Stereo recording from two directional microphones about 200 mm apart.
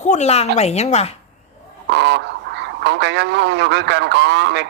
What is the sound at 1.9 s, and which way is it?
Speech, 60° right (ahead or behind).